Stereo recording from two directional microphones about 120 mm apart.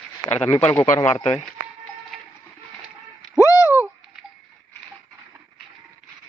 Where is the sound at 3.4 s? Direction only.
30° left (ahead or behind).